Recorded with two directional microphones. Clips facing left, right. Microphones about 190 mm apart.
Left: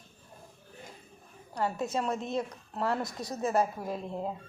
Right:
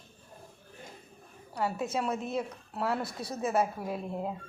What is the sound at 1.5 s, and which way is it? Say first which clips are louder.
A woman's voice: even; 5° right (ahead or behind).